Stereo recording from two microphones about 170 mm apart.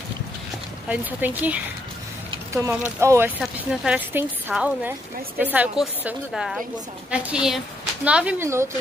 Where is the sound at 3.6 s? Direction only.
5° right (ahead or behind).